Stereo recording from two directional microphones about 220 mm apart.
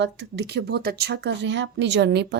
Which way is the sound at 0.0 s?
50° right (ahead or behind).